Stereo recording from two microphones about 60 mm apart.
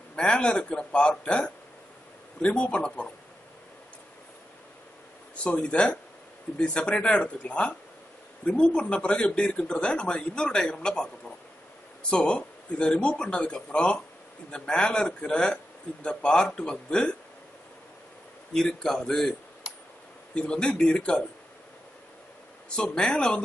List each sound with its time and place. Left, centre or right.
0.1 s speech: centre
5.4 s speech: centre
18.5 s speech: centre
20.3 s speech: centre
22.8 s speech: centre